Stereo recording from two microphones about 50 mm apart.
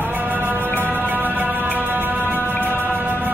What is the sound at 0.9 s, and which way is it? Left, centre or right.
Music, right.